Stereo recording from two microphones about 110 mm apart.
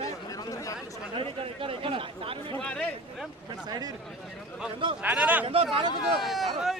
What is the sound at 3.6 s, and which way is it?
Speech, 35° right (ahead or behind).